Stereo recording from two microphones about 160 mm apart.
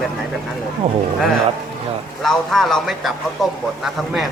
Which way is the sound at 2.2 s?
Centre (ahead or behind).